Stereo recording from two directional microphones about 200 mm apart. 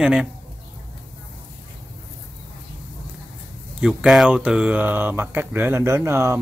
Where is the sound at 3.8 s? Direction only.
5° right (ahead or behind).